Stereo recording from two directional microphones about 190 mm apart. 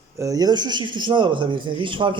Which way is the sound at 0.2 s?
20° right (ahead or behind).